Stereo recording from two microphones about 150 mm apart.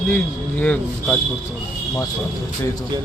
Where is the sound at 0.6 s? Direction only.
10° left (ahead or behind).